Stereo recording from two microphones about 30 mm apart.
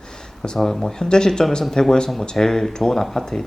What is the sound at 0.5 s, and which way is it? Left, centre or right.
Speech, centre.